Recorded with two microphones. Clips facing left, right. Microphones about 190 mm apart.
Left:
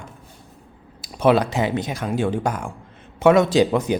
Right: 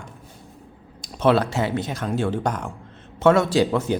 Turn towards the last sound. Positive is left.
turn(degrees=15)  # may be behind; listen again after turning